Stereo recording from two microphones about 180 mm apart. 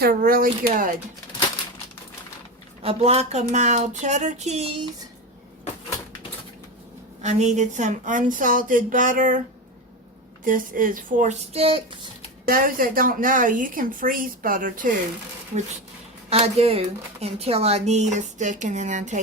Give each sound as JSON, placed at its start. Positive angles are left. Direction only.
{"t": 0.0, "sound": "speech", "side_deg": -55}
{"t": 2.8, "sound": "speech", "side_deg": -35}
{"t": 7.2, "sound": "speech", "side_deg": -40}
{"t": 10.4, "sound": "speech", "side_deg": -50}
{"t": 12.5, "sound": "speech", "side_deg": -50}
{"t": 16.3, "sound": "speech", "side_deg": -35}